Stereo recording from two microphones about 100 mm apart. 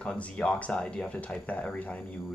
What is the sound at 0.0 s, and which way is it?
Speech, 10° left (ahead or behind).